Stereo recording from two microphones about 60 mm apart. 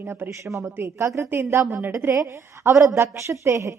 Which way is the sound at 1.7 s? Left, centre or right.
Right.